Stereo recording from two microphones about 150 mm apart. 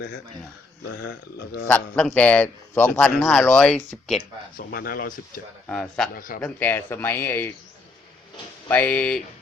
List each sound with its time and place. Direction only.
1.6 s speech: 10° left (ahead or behind)
4.5 s speech: 85° left
5.6 s a man's voice: 5° left (ahead or behind)
6.1 s a man's voice: 65° left (ahead or behind)
6.4 s speech: 10° left (ahead or behind)
8.7 s speech: 10° left (ahead or behind)